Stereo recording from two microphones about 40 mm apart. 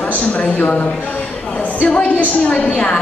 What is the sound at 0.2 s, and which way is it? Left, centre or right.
Speech, left.